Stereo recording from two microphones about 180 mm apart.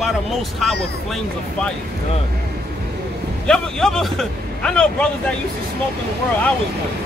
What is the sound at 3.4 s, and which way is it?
A man's voice, 5° left (ahead or behind).